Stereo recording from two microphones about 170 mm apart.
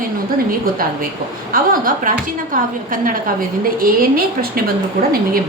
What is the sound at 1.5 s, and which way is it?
A woman's voice, 55° right (ahead or behind).